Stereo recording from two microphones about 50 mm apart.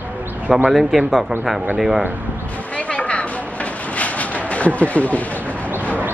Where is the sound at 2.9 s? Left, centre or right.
Left.